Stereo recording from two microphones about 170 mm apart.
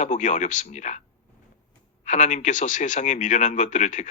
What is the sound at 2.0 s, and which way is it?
Speech, 45° left (ahead or behind).